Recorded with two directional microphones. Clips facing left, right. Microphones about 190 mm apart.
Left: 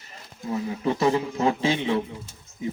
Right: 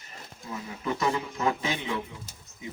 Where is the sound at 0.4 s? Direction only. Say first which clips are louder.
Left 8 dB; 30° left (ahead or behind).